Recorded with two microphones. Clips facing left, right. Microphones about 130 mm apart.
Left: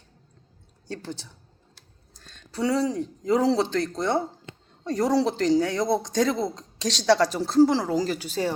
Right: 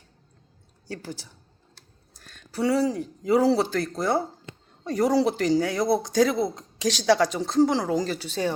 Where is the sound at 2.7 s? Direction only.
25° left (ahead or behind).